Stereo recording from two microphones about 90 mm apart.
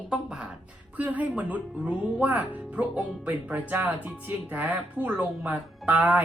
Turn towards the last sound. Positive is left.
turn(degrees=-15)  # may be behind; listen again after turning